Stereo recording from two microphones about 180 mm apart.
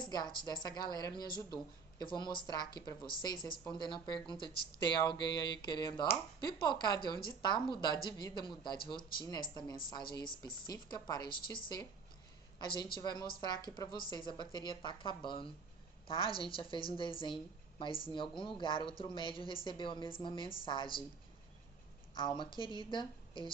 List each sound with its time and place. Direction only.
0.0 s a woman's voice: 25° left (ahead or behind)
22.1 s a woman's voice: 25° left (ahead or behind)